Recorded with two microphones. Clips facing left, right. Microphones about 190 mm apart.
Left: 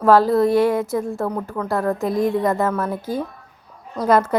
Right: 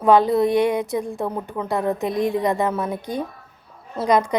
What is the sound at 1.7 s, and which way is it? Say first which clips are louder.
Speech: left 1 dB; 20° right (ahead or behind).